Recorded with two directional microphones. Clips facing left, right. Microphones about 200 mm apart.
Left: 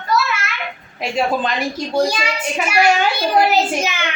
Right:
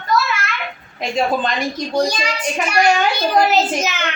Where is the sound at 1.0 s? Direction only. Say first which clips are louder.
Even; 5° left (ahead or behind).